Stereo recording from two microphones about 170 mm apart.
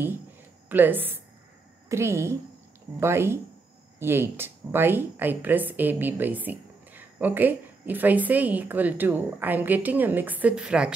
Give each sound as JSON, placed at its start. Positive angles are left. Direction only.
{"t": 0.7, "sound": "a woman's voice", "side_deg": -10}